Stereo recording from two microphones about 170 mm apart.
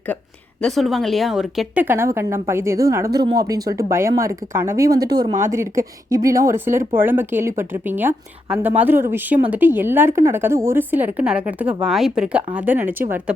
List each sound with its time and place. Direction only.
0.6 s a woman's voice: centre (ahead or behind)